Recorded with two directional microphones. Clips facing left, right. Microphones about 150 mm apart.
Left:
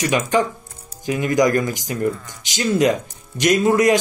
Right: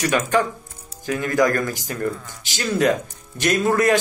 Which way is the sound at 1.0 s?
15° left (ahead or behind).